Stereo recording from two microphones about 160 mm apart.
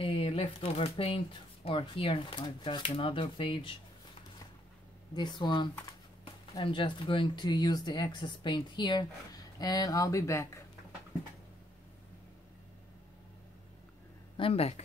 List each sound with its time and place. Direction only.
0.0 s speech: 35° left (ahead or behind)
5.1 s speech: 25° left (ahead or behind)
14.3 s speech: 35° left (ahead or behind)